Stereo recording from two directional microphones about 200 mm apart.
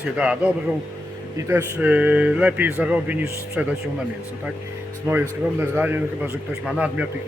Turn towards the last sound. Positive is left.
turn(degrees=-5)  # may be behind; listen again after turning